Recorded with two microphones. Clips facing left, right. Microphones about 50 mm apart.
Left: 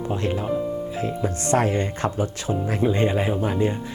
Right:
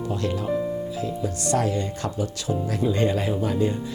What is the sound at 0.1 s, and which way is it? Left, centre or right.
Speech, left.